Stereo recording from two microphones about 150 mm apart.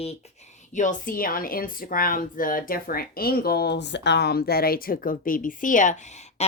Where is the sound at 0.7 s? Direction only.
55° left (ahead or behind).